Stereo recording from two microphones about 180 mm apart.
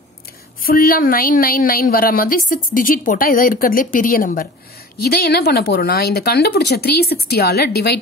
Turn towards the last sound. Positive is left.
turn(degrees=60)  # may be behind; listen again after turning